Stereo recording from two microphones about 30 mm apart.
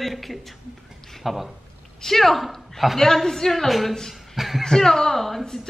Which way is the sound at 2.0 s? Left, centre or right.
Centre.